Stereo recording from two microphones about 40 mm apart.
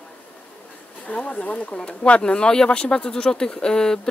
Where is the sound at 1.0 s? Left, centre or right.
Left.